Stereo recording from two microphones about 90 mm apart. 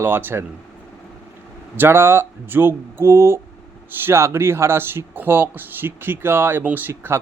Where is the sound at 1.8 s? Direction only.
25° right (ahead or behind).